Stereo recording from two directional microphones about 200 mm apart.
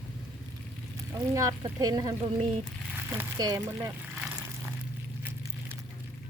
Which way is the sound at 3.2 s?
20° right (ahead or behind).